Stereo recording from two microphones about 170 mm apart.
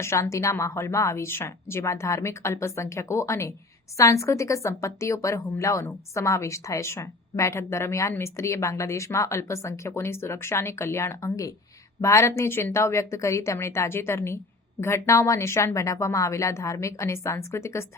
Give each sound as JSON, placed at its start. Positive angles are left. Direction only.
{"t": 0.0, "sound": "a woman's voice", "side_deg": 15}